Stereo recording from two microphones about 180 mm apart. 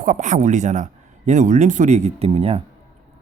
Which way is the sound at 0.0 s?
45° right (ahead or behind).